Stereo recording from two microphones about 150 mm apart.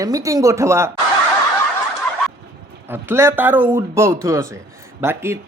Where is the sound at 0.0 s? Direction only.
25° right (ahead or behind).